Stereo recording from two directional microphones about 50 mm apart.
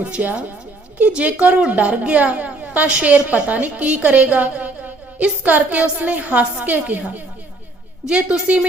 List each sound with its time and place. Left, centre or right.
0.0 s a woman's voice: right
8.0 s a woman's voice: right